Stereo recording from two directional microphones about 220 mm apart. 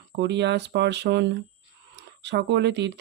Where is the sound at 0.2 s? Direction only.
50° right (ahead or behind).